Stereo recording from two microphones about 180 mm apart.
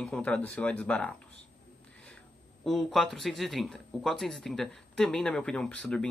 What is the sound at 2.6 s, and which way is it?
Speech, centre (ahead or behind).